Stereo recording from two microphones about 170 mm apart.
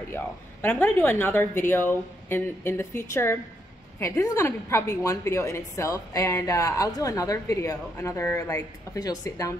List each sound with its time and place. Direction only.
0.1 s a woman's voice: 15° left (ahead or behind)